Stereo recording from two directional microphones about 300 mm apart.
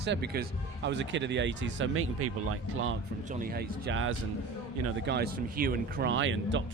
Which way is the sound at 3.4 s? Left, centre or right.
Right.